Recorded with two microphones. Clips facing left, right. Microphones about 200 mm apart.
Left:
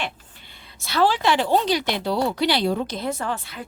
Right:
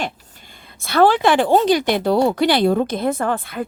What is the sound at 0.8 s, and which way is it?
A woman's voice, 55° right (ahead or behind).